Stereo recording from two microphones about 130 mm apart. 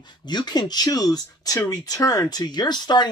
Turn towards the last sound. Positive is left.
turn(degrees=35)  # may be behind; listen again after turning